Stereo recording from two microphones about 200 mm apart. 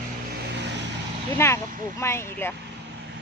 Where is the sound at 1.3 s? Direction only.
15° left (ahead or behind).